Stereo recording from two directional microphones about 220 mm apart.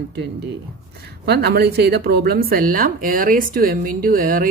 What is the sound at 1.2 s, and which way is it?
A woman's voice, 45° right (ahead or behind).